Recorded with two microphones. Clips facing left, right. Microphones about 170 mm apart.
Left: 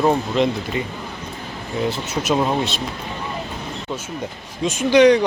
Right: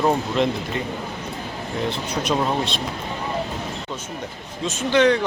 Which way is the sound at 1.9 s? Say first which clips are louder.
Left 2 dB; 5° left (ahead or behind).